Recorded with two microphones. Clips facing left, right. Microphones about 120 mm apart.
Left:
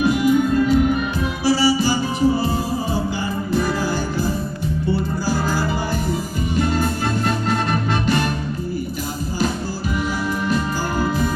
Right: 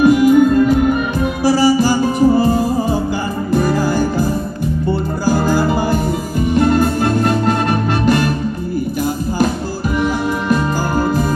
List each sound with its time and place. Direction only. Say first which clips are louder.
0.0 s music: right 7 dB; 55° right (ahead or behind)